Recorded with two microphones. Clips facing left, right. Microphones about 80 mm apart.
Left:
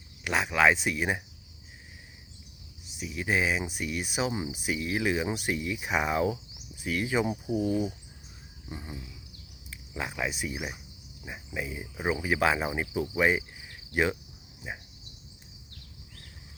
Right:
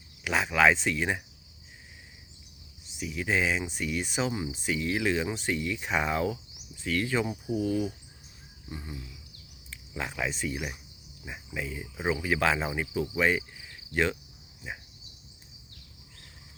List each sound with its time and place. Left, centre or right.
0.3 s speech: centre
3.0 s speech: centre
9.6 s speech: centre